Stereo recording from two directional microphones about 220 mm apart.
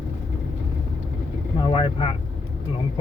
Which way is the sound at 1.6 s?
20° left (ahead or behind).